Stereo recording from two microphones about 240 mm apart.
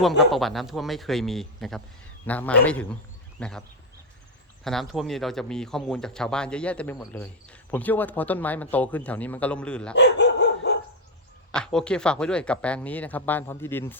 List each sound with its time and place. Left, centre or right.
0.2 s speech: centre
4.6 s speech: centre
9.9 s dog: left
11.5 s speech: centre